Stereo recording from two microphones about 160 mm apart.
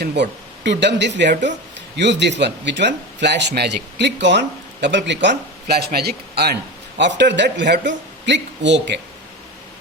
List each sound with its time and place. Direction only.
0.0 s speech: 90° right